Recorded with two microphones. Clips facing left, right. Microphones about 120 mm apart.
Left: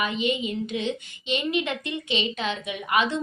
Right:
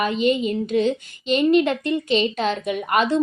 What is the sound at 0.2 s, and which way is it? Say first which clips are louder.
A woman's voice: right 6 dB; 45° right (ahead or behind).